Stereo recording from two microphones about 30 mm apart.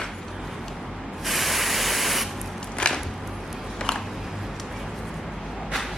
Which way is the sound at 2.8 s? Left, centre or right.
Left.